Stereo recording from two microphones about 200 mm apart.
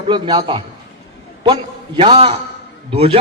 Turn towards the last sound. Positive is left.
turn(degrees=-30)  # may be behind; listen again after turning